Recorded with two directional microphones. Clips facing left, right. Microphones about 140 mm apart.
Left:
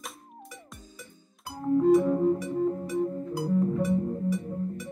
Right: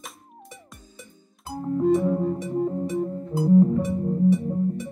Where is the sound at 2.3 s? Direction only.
25° right (ahead or behind).